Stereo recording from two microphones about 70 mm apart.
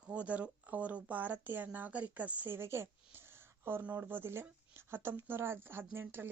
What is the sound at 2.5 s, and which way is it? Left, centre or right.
Speech, right.